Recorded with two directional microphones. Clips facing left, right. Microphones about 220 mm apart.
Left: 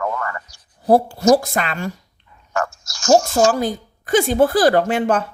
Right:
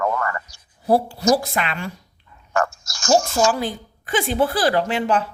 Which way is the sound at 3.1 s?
45° left (ahead or behind).